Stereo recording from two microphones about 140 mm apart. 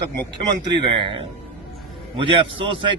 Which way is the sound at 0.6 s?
35° right (ahead or behind).